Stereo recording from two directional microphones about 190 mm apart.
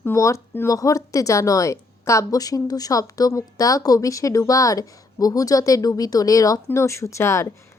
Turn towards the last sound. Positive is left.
turn(degrees=15)  # may be behind; listen again after turning